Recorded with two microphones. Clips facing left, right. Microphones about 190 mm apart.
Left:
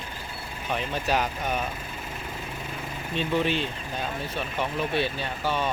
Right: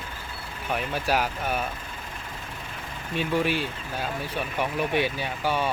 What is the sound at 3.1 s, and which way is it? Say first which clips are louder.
Speech: even; 10° right (ahead or behind).